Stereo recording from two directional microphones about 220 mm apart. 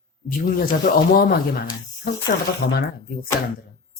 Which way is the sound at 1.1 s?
45° left (ahead or behind).